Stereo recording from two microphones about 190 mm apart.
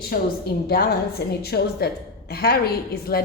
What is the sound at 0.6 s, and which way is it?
A woman's voice, 55° left (ahead or behind).